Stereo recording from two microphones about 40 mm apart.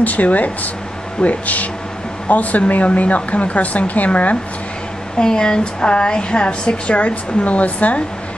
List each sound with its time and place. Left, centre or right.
0.0 s a woman's voice: left
5.2 s a woman's voice: left